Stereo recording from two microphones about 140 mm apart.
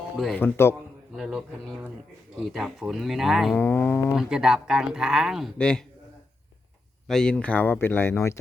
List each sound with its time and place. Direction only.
0.3 s speech: 15° left (ahead or behind)
1.1 s speech: centre (ahead or behind)
3.6 s speech: 15° left (ahead or behind)
4.1 s speech: 5° right (ahead or behind)
7.1 s speech: 5° left (ahead or behind)